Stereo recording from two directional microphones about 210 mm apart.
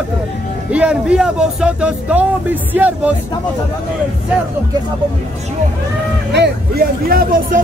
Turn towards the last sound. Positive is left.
turn(degrees=-45)  # may be behind; listen again after turning